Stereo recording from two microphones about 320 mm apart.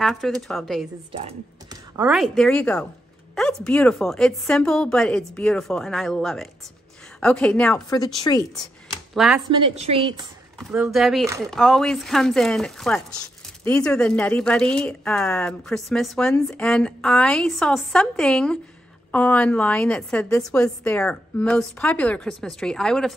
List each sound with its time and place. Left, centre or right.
0.0 s speech: centre
1.1 s speech: centre
9.1 s speech: centre
9.5 s a woman's voice: centre
10.6 s speech: centre